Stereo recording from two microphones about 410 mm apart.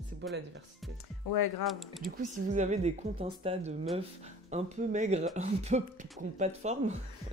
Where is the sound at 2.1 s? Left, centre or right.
Centre.